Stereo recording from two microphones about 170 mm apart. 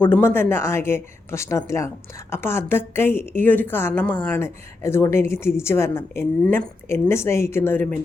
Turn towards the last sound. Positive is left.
turn(degrees=10)  # may be behind; listen again after turning